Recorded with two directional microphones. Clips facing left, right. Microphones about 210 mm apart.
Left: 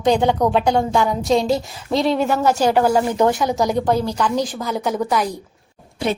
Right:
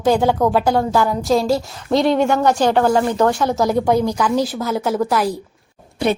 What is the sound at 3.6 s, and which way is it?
A woman's voice, 5° right (ahead or behind).